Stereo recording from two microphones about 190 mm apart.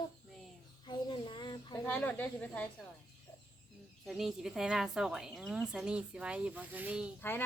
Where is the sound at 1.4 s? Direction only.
25° left (ahead or behind).